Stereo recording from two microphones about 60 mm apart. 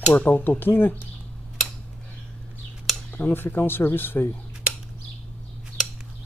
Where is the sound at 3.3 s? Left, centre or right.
Left.